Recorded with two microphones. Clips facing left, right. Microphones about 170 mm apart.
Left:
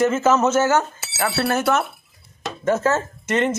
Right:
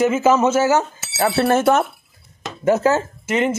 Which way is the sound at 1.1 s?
25° right (ahead or behind).